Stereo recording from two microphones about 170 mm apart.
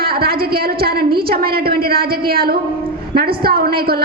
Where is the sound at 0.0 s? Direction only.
65° right (ahead or behind).